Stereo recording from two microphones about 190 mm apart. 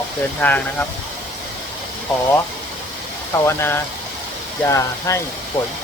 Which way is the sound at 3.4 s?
10° left (ahead or behind).